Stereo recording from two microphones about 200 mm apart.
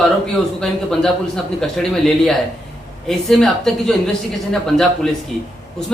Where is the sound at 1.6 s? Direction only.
5° left (ahead or behind).